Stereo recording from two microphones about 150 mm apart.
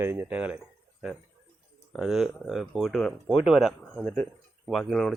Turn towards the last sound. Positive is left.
turn(degrees=5)  # may be behind; listen again after turning